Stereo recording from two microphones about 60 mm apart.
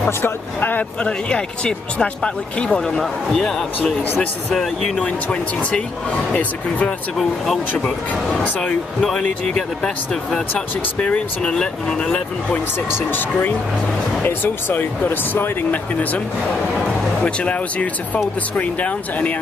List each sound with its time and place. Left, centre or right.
0.2 s speech: left
1.0 s speech: centre
7.2 s speech: centre
7.8 s speech: centre
11.4 s speech: centre
12.9 s speech: left